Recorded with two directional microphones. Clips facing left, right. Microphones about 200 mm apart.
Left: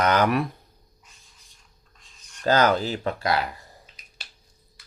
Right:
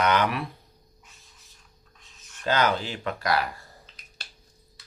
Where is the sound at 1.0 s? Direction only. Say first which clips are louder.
Right 1 dB; centre (ahead or behind).